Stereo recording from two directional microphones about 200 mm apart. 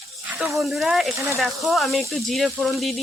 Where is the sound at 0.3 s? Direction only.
Centre (ahead or behind).